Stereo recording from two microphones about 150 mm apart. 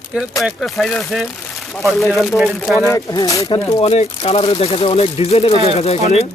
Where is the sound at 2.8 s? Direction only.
20° left (ahead or behind).